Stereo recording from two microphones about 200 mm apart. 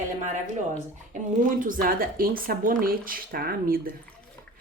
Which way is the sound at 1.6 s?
45° right (ahead or behind).